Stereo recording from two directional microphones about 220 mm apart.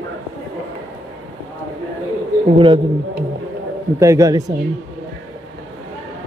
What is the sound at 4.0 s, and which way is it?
Speech, 15° right (ahead or behind).